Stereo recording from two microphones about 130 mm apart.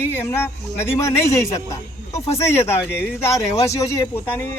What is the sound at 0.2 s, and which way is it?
Speech, 20° left (ahead or behind).